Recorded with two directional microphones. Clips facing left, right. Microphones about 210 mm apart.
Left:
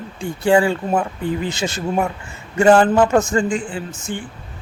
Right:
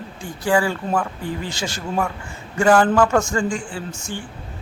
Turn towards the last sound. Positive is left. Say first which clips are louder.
# left 3 dB
turn(degrees=20)  # may be behind; listen again after turning